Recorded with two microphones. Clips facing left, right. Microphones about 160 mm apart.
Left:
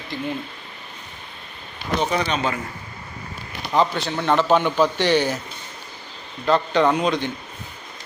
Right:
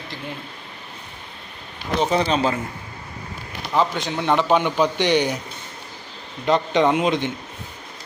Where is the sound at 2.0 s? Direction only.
30° right (ahead or behind).